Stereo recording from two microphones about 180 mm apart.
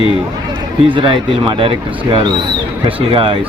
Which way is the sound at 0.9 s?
25° right (ahead or behind).